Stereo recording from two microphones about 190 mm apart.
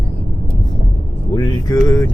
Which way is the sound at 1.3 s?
20° left (ahead or behind).